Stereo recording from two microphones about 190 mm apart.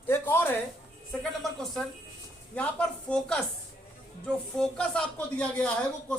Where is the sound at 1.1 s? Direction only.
Centre (ahead or behind).